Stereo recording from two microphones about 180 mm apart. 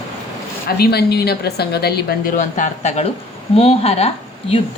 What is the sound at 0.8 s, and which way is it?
A woman's voice, 60° left (ahead or behind).